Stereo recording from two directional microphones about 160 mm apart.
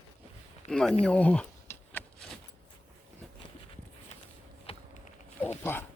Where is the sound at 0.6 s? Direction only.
5° left (ahead or behind).